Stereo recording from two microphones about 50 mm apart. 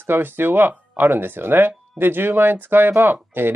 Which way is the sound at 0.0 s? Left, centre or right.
Right.